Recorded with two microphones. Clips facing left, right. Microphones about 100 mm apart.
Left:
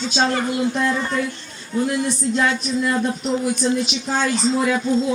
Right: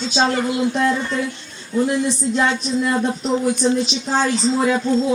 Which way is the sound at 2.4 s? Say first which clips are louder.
Right 1 dB; 30° right (ahead or behind).